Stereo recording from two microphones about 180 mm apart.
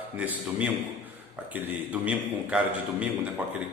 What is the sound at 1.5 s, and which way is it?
A man's voice, 5° right (ahead or behind).